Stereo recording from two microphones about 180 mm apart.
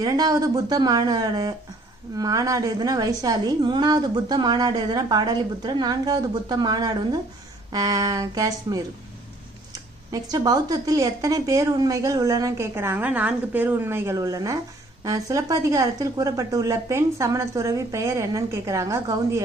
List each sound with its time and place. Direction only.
0.0 s a woman's voice: 20° right (ahead or behind)